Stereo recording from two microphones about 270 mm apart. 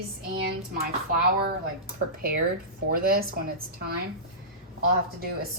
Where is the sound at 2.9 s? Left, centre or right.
Right.